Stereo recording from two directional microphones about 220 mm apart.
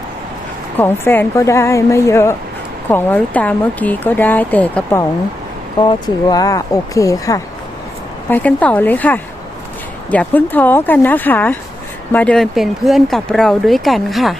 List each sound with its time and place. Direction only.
0.8 s speech: 10° left (ahead or behind)
5.8 s speech: 20° left (ahead or behind); by 14.3 s centre (ahead or behind)